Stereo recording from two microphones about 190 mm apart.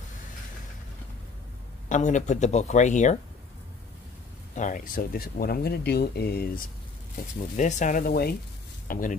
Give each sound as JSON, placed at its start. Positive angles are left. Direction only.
{"t": 1.9, "sound": "speech", "side_deg": 40}
{"t": 4.6, "sound": "speech", "side_deg": 45}